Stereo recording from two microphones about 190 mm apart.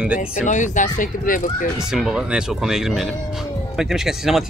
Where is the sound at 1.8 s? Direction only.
5° right (ahead or behind).